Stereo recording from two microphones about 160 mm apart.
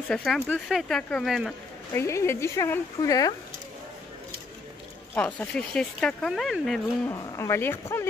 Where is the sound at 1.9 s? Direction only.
15° left (ahead or behind).